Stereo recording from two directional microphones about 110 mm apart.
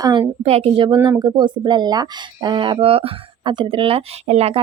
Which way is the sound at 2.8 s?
60° right (ahead or behind).